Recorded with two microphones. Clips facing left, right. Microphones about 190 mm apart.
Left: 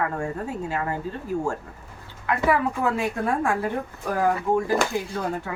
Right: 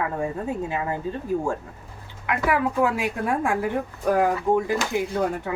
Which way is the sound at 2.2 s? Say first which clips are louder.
Left 1 dB; 15° right (ahead or behind).